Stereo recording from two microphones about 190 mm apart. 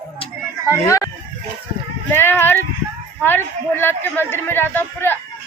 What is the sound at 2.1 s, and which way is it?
Speech, 10° left (ahead or behind).